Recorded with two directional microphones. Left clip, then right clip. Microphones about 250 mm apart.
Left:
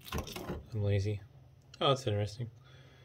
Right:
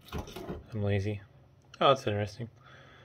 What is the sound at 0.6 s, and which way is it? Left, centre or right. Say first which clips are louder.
Speech: right 4 dB; centre.